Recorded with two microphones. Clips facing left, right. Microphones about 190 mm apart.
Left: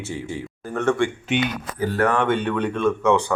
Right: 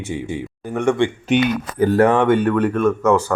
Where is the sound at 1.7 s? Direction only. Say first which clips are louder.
Right 10 dB; 55° right (ahead or behind).